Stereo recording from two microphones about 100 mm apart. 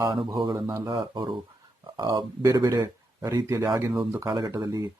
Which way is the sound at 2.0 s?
45° right (ahead or behind).